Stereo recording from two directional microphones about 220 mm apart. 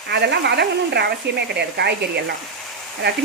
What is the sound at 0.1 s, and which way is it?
Speech, 50° right (ahead or behind).